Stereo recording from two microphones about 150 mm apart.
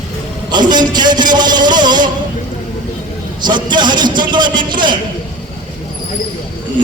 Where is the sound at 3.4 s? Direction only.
30° right (ahead or behind).